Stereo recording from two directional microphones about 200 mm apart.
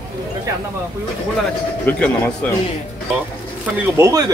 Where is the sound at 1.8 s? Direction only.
5° left (ahead or behind).